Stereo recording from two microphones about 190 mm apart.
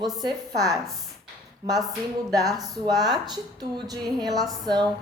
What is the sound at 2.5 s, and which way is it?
Speech, 20° right (ahead or behind).